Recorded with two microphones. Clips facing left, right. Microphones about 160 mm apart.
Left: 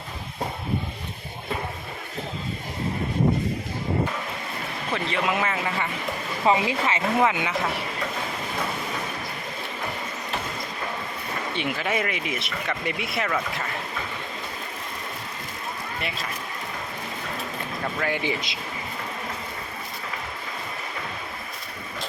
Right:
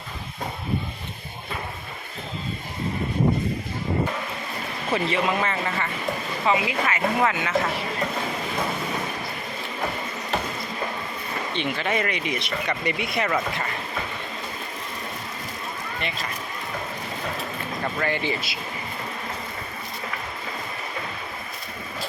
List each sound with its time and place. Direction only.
4.9 s speech: centre (ahead or behind)
6.4 s speech: 30° left (ahead or behind)
11.5 s speech: 5° left (ahead or behind)
16.0 s speech: 5° left (ahead or behind)
18.0 s speech: 10° left (ahead or behind)